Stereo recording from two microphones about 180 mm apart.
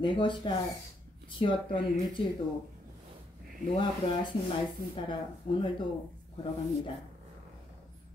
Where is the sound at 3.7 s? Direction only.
25° left (ahead or behind).